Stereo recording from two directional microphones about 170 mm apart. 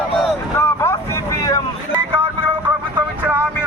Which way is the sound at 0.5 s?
15° left (ahead or behind).